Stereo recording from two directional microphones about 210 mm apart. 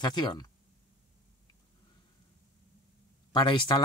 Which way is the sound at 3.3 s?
20° left (ahead or behind).